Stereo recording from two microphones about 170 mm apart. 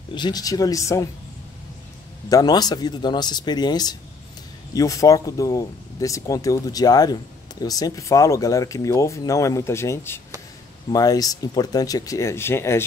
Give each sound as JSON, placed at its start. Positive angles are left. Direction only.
{"t": 0.1, "sound": "speech", "side_deg": 25}
{"t": 2.2, "sound": "speech", "side_deg": 20}